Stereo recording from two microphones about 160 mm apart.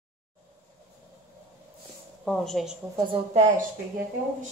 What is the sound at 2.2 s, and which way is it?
Speech, centre (ahead or behind).